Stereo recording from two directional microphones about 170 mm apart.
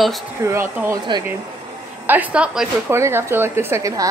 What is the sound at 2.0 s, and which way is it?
Speech, 10° right (ahead or behind).